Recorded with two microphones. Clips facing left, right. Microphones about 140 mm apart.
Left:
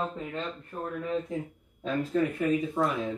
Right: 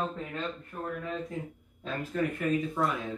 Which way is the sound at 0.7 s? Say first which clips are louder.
Left 6 dB; 30° left (ahead or behind).